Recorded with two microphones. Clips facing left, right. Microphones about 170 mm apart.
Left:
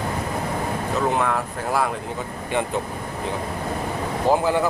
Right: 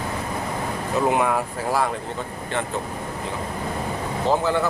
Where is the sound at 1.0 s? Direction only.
10° right (ahead or behind).